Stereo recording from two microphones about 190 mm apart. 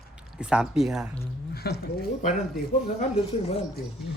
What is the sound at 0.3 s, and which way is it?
Speech, 5° right (ahead or behind).